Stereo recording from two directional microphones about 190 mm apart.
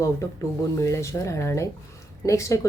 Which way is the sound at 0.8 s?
15° left (ahead or behind).